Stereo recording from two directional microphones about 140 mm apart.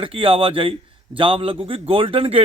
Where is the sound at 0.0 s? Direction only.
40° right (ahead or behind).